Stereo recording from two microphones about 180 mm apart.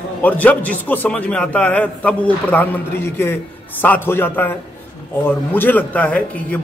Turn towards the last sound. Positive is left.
turn(degrees=10)  # may be behind; listen again after turning